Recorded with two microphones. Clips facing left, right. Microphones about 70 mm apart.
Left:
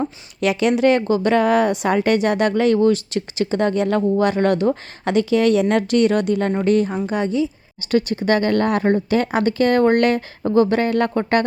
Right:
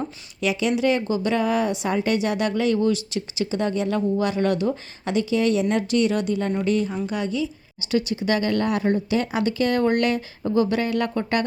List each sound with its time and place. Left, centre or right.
0.4 s a woman's voice: left
6.9 s a woman's voice: left
7.9 s a woman's voice: left